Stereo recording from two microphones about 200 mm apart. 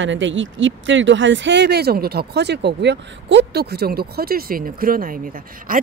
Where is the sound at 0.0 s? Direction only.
70° right (ahead or behind).